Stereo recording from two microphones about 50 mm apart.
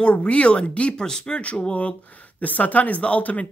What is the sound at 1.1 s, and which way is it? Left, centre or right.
Speech, centre.